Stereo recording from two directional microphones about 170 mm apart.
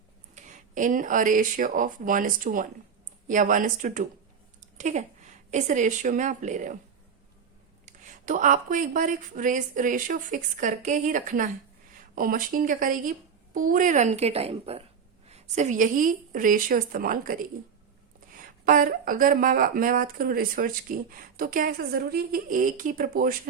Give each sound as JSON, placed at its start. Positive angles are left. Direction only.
{"t": 0.3, "sound": "speech", "side_deg": -45}
{"t": 7.9, "sound": "speech", "side_deg": -50}